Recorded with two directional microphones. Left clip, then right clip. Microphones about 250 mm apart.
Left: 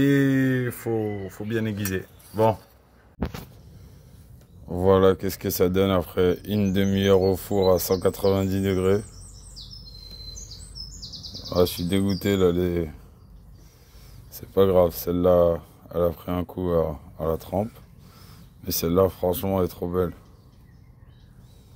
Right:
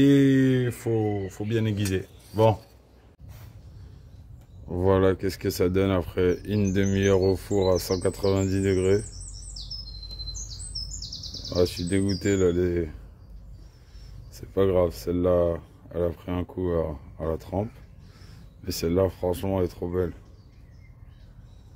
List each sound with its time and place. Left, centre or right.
0.5 s a sound: centre
0.8 s speech: centre
1.6 s speech: right
4.6 s speech: centre
11.4 s speech: centre
14.3 s speech: centre